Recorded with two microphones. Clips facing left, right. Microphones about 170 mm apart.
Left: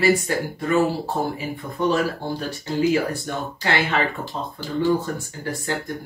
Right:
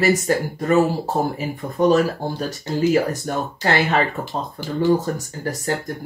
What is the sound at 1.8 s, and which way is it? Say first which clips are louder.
Speech: right 5 dB; 40° right (ahead or behind).